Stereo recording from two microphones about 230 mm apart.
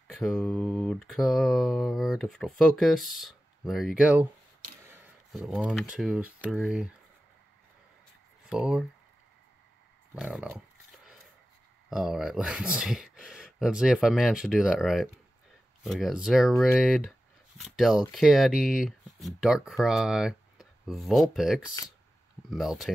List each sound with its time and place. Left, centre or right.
0.1 s speech: centre
4.8 s a sound: centre
5.5 s speech: centre
8.5 s speech: centre
10.1 s speech: centre
11.9 s speech: centre